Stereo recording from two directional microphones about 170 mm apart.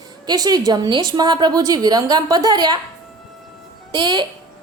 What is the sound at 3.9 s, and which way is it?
Speech, 25° right (ahead or behind).